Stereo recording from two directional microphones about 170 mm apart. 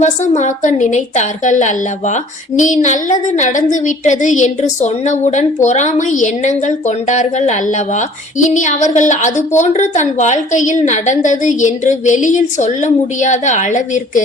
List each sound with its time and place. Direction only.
0.0 s a woman's voice: 45° left (ahead or behind)